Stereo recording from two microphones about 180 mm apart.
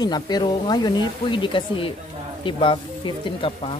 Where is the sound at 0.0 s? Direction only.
20° left (ahead or behind).